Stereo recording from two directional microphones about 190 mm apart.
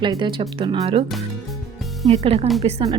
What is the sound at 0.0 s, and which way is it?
A woman's voice, 25° right (ahead or behind).